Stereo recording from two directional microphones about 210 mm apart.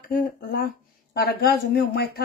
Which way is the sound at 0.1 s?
45° left (ahead or behind).